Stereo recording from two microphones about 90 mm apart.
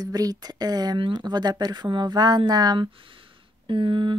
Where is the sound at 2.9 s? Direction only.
75° right (ahead or behind).